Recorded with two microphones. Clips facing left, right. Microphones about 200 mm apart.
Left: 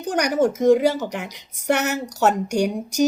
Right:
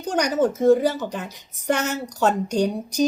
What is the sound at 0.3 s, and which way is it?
Speech, 10° left (ahead or behind).